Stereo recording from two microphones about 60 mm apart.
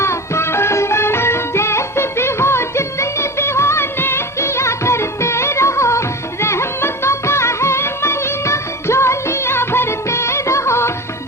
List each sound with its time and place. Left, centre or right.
0.0 s music: left